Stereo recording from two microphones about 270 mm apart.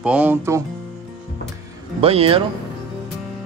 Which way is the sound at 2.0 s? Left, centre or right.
Right.